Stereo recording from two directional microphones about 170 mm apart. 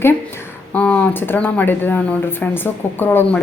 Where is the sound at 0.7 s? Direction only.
10° left (ahead or behind).